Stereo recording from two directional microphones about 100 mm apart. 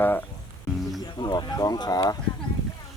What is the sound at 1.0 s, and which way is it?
Speech, 45° left (ahead or behind).